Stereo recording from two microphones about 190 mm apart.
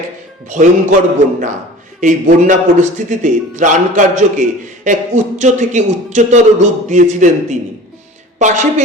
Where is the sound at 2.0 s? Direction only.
40° right (ahead or behind).